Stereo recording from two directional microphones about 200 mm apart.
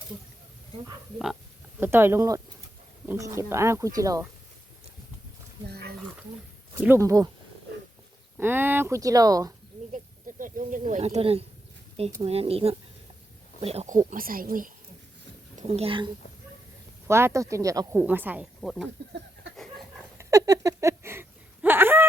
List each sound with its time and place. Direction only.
1.8 s speech: 10° right (ahead or behind)
5.6 s speech: 50° right (ahead or behind)
6.7 s speech: 10° right (ahead or behind)
8.4 s speech: 10° right (ahead or behind)
9.9 s speech: 40° right (ahead or behind)
15.5 s a woman's voice: 30° right (ahead or behind)
17.1 s speech: 15° right (ahead or behind)
19.5 s a sound: centre (ahead or behind)
20.1 s a sound: 15° right (ahead or behind)